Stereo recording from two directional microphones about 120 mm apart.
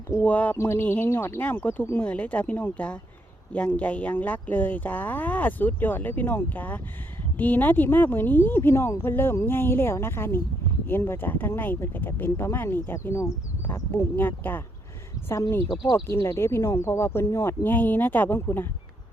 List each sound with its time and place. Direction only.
0.1 s speech: 15° left (ahead or behind)